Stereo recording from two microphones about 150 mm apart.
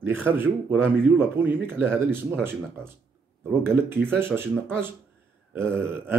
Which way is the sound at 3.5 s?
15° right (ahead or behind).